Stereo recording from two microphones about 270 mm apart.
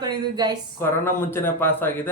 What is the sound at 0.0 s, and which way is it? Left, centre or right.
Speech, centre.